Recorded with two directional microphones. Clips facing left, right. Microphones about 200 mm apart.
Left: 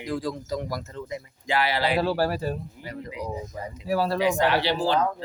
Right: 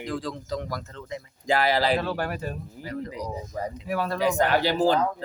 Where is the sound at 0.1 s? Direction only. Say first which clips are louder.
Left 3 dB; 10° left (ahead or behind).